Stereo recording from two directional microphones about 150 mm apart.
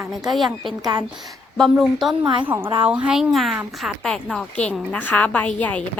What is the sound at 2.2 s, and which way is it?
Speech, 30° right (ahead or behind).